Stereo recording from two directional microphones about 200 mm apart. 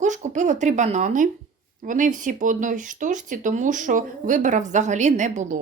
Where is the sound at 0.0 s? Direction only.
35° right (ahead or behind).